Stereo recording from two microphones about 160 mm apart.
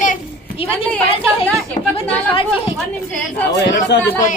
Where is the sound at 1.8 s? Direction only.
50° left (ahead or behind).